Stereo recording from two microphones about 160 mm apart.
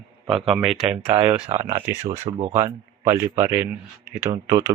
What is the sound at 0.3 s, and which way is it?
Speech, centre (ahead or behind).